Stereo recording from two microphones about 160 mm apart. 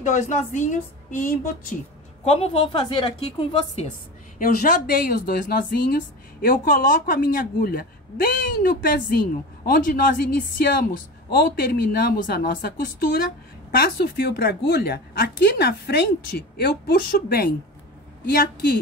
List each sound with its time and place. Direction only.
0.0 s a woman's voice: 50° left (ahead or behind)
2.2 s a woman's voice: 40° left (ahead or behind)
4.4 s a woman's voice: 65° left (ahead or behind)
13.7 s a woman's voice: 80° left